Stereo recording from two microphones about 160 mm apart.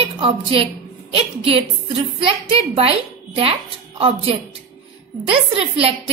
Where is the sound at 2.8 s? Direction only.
35° right (ahead or behind).